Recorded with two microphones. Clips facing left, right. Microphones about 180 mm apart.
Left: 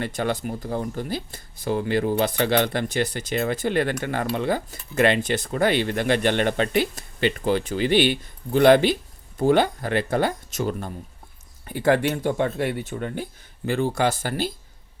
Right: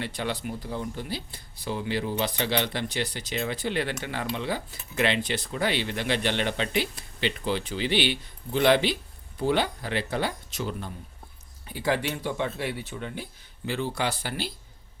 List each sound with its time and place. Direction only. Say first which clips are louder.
0.0 s speech: left 5 dB; 45° left (ahead or behind)